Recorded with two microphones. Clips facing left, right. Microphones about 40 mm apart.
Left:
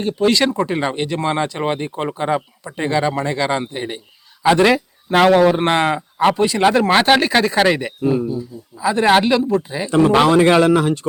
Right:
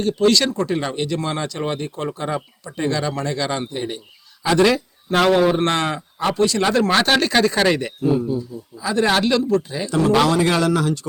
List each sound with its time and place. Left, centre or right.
0.0 s a man's voice: centre